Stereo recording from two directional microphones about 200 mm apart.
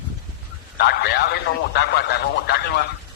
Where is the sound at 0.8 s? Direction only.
55° left (ahead or behind).